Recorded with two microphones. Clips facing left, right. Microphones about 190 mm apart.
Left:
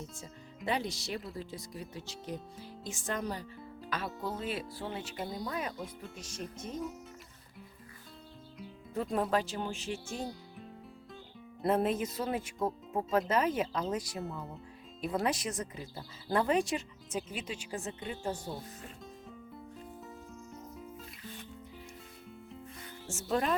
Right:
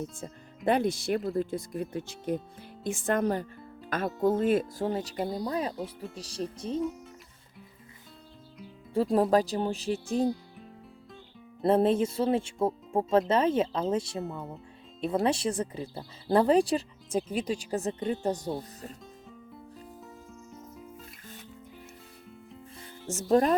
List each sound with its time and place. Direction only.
0.0 s speech: 55° right (ahead or behind); by 6.8 s 30° right (ahead or behind)
8.9 s speech: 30° right (ahead or behind)
10.1 s music: centre (ahead or behind)
11.6 s speech: 30° right (ahead or behind)
14.3 s speech: centre (ahead or behind)
15.0 s speech: 30° right (ahead or behind)
20.5 s music: centre (ahead or behind)
23.3 s speech: 40° right (ahead or behind)